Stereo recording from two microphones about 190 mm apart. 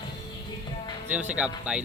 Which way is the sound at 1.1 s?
5° right (ahead or behind).